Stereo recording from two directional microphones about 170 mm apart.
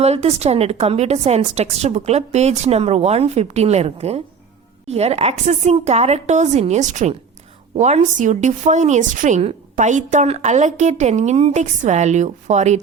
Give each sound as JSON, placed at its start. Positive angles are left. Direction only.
{"t": 0.0, "sound": "a woman's voice", "side_deg": -40}